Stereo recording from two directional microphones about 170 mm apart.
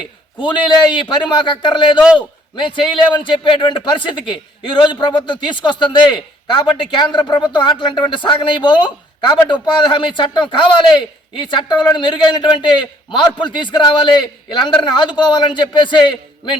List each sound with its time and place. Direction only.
0.3 s a man's voice: 30° left (ahead or behind)